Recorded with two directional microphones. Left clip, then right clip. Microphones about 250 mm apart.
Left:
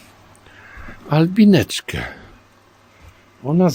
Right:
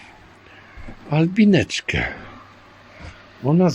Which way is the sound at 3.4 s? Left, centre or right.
Centre.